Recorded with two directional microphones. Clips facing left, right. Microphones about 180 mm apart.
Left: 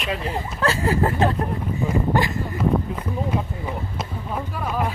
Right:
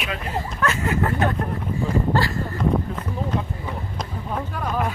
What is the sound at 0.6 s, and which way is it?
Speech, 30° left (ahead or behind).